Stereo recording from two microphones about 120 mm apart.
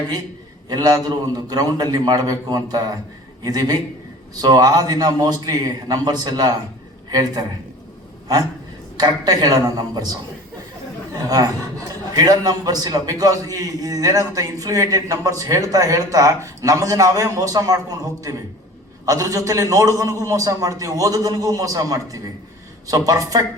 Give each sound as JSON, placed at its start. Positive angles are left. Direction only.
{"t": 0.7, "sound": "a man's voice", "side_deg": -35}
{"t": 9.0, "sound": "a man's voice", "side_deg": -35}